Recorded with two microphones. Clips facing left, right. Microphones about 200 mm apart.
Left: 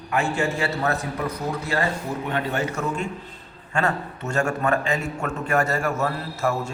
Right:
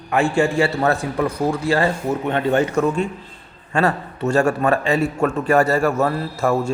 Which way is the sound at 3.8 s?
35° right (ahead or behind).